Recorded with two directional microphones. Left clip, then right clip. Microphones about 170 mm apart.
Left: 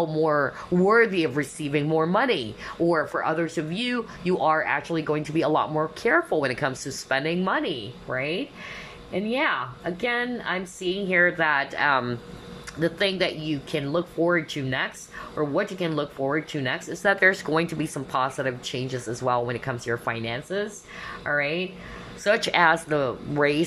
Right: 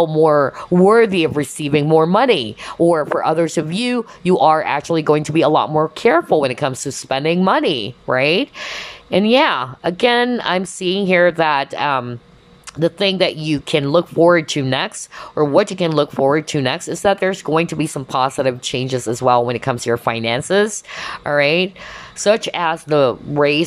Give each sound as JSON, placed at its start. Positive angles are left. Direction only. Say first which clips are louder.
{"t": 0.0, "sound": "speech", "louder": "right 10 dB", "side_deg": -20}
{"t": 20.4, "sound": "a woman's voice", "louder": "right 14 dB", "side_deg": -35}
{"t": 22.4, "sound": "speech", "louder": "even", "side_deg": -10}